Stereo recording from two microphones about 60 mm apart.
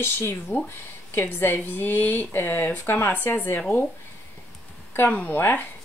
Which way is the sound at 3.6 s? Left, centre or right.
Left.